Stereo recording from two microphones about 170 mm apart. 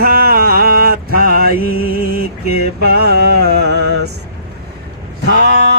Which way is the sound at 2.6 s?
65° right (ahead or behind).